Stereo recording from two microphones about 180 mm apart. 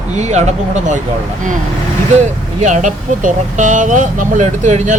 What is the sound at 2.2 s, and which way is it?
Speech, 40° right (ahead or behind).